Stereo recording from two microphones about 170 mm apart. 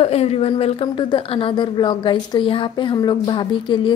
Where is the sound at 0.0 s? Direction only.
40° left (ahead or behind).